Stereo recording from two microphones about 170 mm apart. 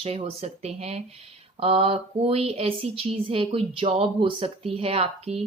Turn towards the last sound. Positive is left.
turn(degrees=-35)  # may be behind; listen again after turning